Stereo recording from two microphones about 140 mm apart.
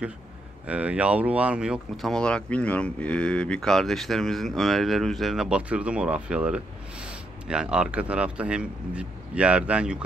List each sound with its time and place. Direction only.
0.7 s speech: 10° right (ahead or behind)